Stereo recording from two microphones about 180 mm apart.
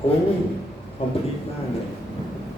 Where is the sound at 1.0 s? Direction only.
30° left (ahead or behind).